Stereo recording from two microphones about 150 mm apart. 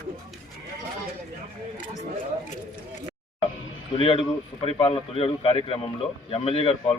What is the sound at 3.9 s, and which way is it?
Speech, 35° left (ahead or behind).